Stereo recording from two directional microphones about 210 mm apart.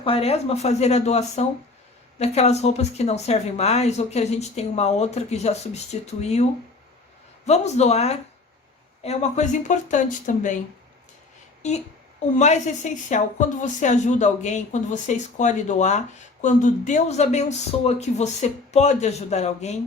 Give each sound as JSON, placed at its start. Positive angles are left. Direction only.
{"t": 0.0, "sound": "a woman's voice", "side_deg": 25}
{"t": 7.4, "sound": "a woman's voice", "side_deg": 30}
{"t": 11.6, "sound": "a woman's voice", "side_deg": 35}